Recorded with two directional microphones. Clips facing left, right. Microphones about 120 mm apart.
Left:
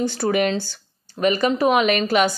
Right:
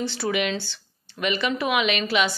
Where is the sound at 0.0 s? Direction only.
45° left (ahead or behind).